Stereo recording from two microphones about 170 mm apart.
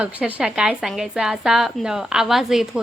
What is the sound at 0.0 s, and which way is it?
Speech, 5° right (ahead or behind).